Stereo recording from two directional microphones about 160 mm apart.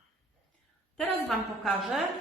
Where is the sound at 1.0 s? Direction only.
Centre (ahead or behind).